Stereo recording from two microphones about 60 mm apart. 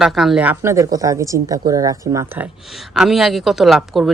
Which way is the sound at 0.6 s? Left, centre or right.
Right.